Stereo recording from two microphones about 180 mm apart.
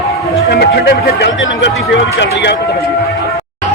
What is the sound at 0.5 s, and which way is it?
Speech, 65° left (ahead or behind).